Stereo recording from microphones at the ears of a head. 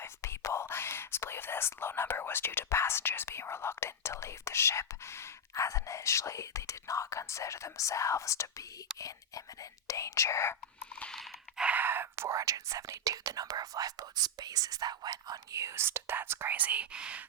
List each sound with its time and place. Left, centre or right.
0.0 s speech: left
11.7 s speech: right